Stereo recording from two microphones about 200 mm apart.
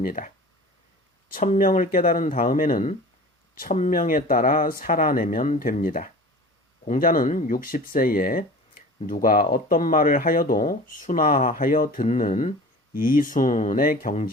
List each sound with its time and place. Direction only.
0.0 s speech: 45° left (ahead or behind)
1.3 s speech: 45° left (ahead or behind)